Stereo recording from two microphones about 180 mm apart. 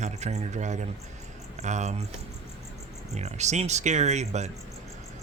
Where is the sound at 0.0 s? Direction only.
40° right (ahead or behind).